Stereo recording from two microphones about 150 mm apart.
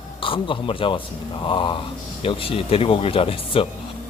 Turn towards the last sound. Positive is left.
turn(degrees=35)  # may be behind; listen again after turning